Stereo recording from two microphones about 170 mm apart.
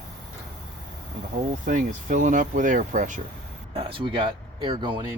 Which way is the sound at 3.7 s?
35° right (ahead or behind).